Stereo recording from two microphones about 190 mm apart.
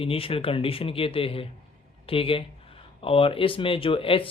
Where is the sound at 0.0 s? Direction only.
30° left (ahead or behind).